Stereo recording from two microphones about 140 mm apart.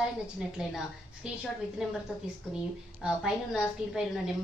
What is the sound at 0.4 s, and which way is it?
Speech, 5° right (ahead or behind).